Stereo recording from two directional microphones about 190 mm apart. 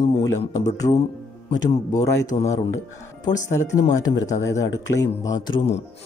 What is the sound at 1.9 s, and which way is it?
Speech, 20° left (ahead or behind).